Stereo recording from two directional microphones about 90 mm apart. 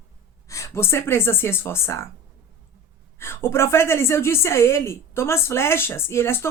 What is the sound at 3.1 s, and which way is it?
Speech, 30° left (ahead or behind).